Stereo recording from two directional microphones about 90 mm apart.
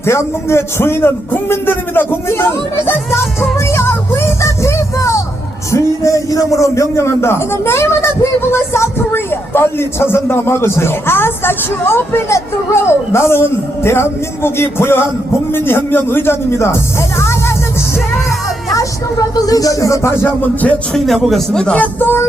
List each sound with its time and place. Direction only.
0.0 s a man's voice: 30° left (ahead or behind)
3.6 s music: 30° left (ahead or behind)
5.7 s a man's voice: 35° left (ahead or behind)
19.5 s speech: 40° left (ahead or behind)
20.9 s speech: centre (ahead or behind); by 22.3 s 25° left (ahead or behind)